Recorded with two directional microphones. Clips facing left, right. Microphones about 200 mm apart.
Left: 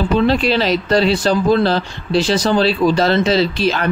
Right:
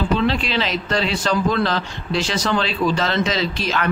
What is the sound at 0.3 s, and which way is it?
Speech, 40° left (ahead or behind).